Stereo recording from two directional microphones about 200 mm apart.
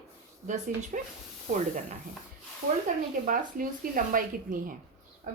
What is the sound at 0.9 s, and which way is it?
Speech, 40° right (ahead or behind).